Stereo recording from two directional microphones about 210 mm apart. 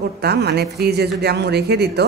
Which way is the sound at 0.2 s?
50° right (ahead or behind).